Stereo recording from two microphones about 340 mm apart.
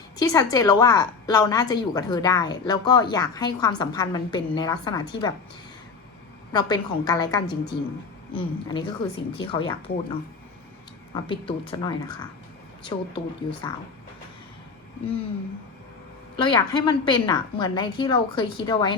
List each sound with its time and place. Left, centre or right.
0.2 s a woman's voice: centre
6.5 s a woman's voice: centre
11.1 s a woman's voice: centre
16.4 s a woman's voice: centre